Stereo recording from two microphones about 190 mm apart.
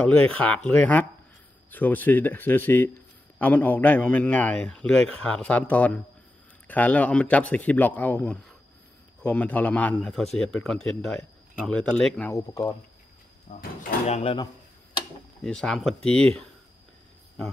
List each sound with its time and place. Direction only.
0.0 s a man's voice: 5° left (ahead or behind)
12.4 s a man's voice: 15° left (ahead or behind)
13.5 s speech: 50° left (ahead or behind)
14.0 s speech: 30° left (ahead or behind)
15.4 s a man's voice: 5° left (ahead or behind)